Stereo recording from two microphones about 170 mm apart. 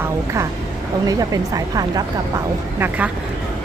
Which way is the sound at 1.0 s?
20° right (ahead or behind).